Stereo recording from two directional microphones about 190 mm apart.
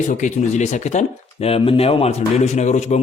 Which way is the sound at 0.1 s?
40° left (ahead or behind).